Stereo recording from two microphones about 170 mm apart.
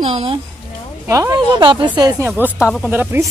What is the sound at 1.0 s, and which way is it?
Speech, 20° right (ahead or behind).